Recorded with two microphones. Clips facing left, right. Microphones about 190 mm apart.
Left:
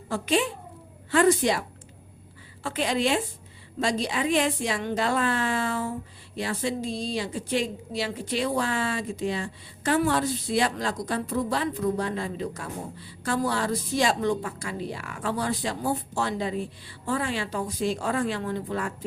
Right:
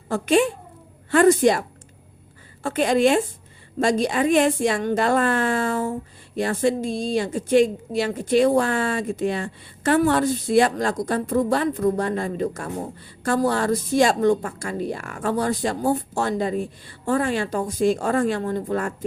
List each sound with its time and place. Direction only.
0.1 s a woman's voice: 50° right (ahead or behind)
2.6 s a woman's voice: 50° right (ahead or behind)